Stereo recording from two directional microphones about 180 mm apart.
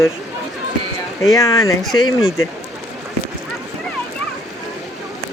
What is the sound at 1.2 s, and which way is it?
Speech, 20° left (ahead or behind).